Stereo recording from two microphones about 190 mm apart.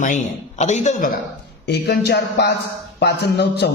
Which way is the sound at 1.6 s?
60° left (ahead or behind).